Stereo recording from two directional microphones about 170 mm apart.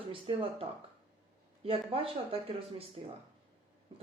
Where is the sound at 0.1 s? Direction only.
30° right (ahead or behind).